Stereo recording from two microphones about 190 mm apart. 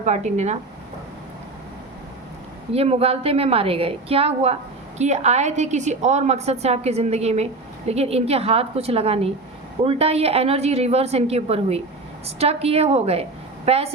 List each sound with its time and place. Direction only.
0.0 s a woman's voice: 35° right (ahead or behind)
2.7 s a woman's voice: 30° right (ahead or behind)